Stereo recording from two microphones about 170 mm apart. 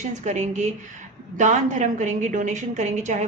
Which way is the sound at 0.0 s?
40° right (ahead or behind).